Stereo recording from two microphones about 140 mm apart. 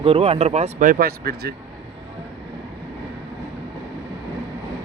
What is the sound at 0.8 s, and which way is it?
Speech, 85° right.